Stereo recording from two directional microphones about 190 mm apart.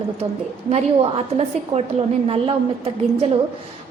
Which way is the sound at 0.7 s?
35° right (ahead or behind).